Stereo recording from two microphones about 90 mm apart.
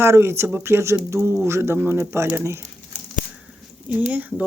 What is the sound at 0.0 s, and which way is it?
Speech, 30° right (ahead or behind).